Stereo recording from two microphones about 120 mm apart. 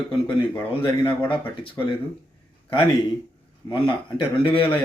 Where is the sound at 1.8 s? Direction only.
30° left (ahead or behind).